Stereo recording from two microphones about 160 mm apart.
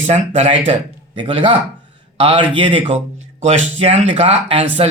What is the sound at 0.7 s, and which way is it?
A man's voice, 35° right (ahead or behind).